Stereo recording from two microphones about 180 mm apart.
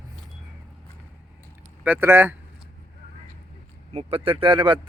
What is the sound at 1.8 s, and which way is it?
Speech, 10° right (ahead or behind).